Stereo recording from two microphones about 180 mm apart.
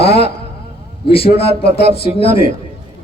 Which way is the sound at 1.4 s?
30° left (ahead or behind).